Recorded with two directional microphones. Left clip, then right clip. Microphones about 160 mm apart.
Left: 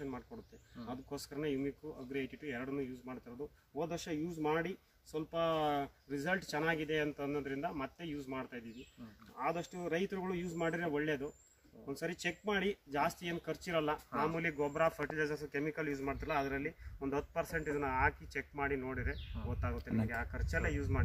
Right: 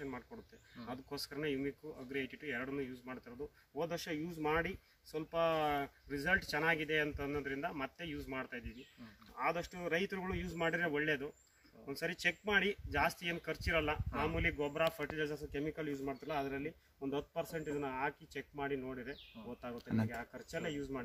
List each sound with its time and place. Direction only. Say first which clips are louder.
0.7 s speech: even; centre (ahead or behind)
19.8 s speech: right 3 dB; 20° right (ahead or behind)
20.1 s speech: left 4 dB; centre (ahead or behind)